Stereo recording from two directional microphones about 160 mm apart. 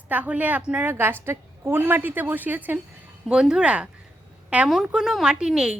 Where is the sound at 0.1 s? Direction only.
10° right (ahead or behind).